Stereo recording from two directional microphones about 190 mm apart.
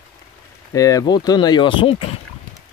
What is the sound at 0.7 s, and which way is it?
Speech, 20° left (ahead or behind).